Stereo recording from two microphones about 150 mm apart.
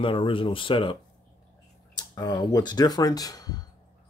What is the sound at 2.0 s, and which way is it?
Speech, 25° left (ahead or behind).